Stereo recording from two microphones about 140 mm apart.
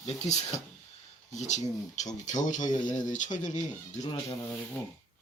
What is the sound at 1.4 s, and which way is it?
Speech, 55° left (ahead or behind).